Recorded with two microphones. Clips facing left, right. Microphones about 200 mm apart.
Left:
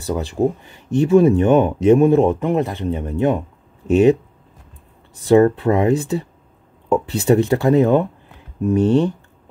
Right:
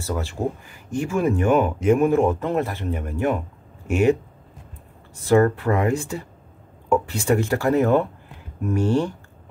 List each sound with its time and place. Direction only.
0.0 s speech: 15° left (ahead or behind)
5.3 s speech: 20° left (ahead or behind)